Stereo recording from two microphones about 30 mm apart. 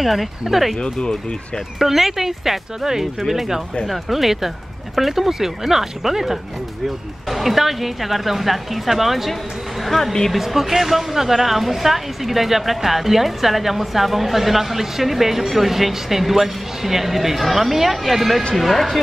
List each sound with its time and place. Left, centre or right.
0.0 s a woman's voice: centre
0.8 s speech: left
1.8 s a woman's voice: centre
10.3 s a woman's voice: centre